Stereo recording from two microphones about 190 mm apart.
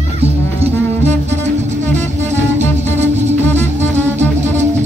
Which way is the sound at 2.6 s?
35° right (ahead or behind).